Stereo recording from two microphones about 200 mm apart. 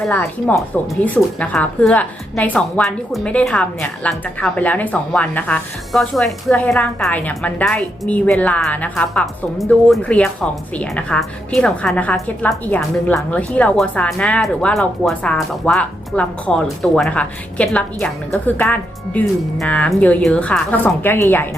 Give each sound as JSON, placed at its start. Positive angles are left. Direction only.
{"t": 0.0, "sound": "a woman's voice", "side_deg": 5}